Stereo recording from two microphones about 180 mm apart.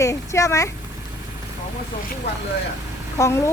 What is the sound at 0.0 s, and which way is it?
Speech, 15° left (ahead or behind).